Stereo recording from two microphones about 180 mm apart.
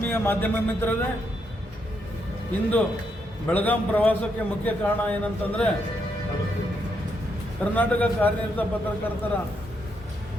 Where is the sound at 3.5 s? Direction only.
10° left (ahead or behind).